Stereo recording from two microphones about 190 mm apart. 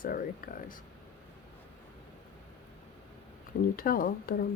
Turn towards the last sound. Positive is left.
turn(degrees=50)  # may be behind; listen again after turning